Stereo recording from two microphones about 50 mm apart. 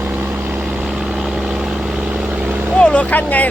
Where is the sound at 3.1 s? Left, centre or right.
Left.